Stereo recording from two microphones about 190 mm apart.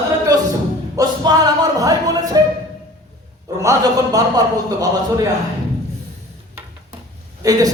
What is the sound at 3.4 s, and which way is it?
A man's voice, 15° right (ahead or behind).